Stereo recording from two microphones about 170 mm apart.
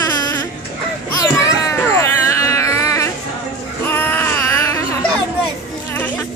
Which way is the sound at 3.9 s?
15° left (ahead or behind).